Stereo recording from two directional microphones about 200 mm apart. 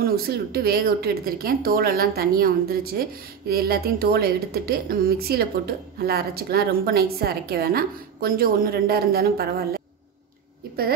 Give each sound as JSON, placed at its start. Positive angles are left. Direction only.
{"t": 0.0, "sound": "speech", "side_deg": -50}